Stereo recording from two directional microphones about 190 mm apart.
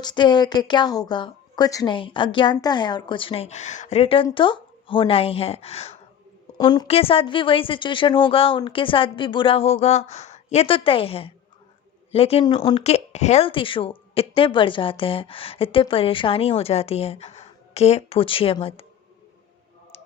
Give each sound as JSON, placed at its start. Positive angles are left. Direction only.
{"t": 0.0, "sound": "speech", "side_deg": 25}
{"t": 6.6, "sound": "a woman's voice", "side_deg": 25}